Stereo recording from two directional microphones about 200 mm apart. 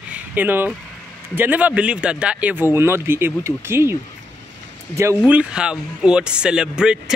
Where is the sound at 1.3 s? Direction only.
10° right (ahead or behind).